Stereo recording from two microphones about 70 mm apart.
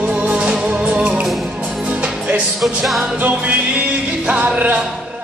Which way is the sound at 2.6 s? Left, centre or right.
Centre.